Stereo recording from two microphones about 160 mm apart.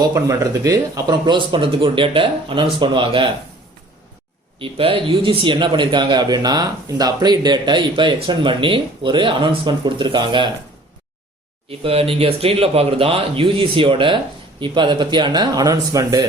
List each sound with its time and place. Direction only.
0.0 s speech: 20° right (ahead or behind)
4.6 s a man's voice: 35° right (ahead or behind)
11.8 s a man's voice: 35° right (ahead or behind)